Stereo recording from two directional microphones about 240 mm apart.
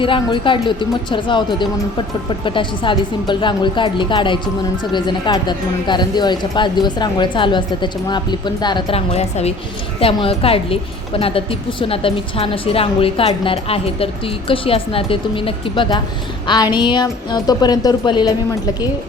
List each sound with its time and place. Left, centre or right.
0.0 s speech: left